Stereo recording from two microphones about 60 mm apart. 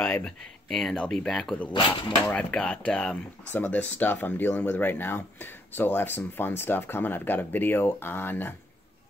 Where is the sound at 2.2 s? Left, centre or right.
Centre.